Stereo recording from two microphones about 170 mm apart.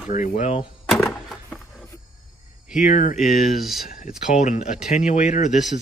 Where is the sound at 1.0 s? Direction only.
Centre (ahead or behind).